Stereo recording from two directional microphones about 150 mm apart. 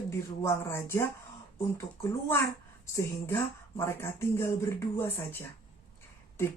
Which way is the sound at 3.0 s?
20° left (ahead or behind).